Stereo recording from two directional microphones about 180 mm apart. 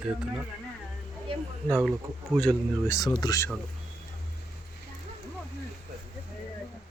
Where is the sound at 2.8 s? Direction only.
15° left (ahead or behind).